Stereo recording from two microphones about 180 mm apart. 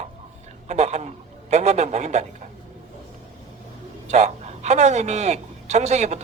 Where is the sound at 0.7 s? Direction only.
40° right (ahead or behind).